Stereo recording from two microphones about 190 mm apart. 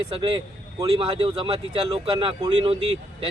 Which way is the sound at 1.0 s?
30° right (ahead or behind).